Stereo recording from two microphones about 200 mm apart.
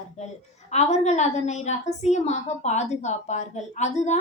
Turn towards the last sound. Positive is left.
turn(degrees=35)  # may be behind; listen again after turning